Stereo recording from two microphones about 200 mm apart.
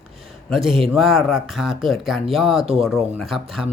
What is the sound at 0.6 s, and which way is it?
Speech, 25° right (ahead or behind).